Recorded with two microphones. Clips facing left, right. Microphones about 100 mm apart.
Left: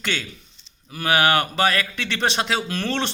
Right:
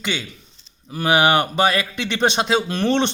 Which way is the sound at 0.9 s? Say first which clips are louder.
Right 3 dB; 20° right (ahead or behind).